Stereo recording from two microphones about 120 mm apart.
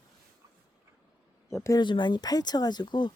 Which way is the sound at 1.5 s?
25° left (ahead or behind).